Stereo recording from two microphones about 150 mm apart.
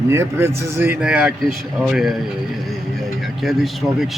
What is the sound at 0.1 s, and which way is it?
A man's voice, 20° right (ahead or behind).